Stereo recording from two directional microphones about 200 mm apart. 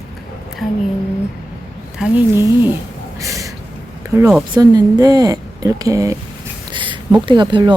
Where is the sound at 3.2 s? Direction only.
15° right (ahead or behind).